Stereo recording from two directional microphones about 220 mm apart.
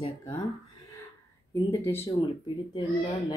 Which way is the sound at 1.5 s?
10° left (ahead or behind).